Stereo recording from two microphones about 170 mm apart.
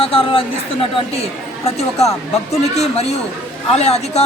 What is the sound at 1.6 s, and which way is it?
A woman's voice, 35° left (ahead or behind).